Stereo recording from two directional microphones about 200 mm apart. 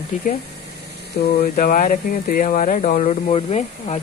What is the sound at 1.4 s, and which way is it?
Speech, 40° left (ahead or behind).